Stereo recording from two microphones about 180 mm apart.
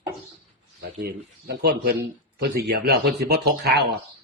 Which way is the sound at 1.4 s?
65° right (ahead or behind).